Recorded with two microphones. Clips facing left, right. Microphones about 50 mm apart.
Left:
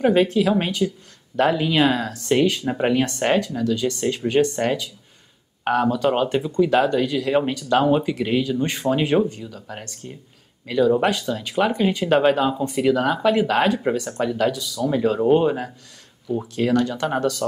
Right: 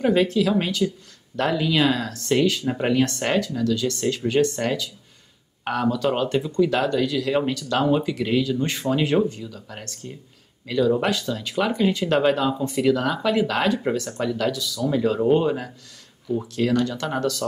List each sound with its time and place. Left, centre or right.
0.0 s speech: centre